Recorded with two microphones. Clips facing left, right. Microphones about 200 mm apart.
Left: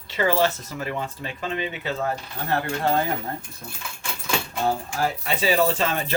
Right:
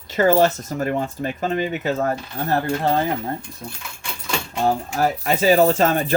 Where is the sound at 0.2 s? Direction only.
45° right (ahead or behind).